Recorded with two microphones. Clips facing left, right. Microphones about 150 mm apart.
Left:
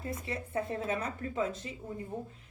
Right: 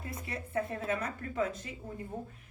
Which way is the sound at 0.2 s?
25° left (ahead or behind).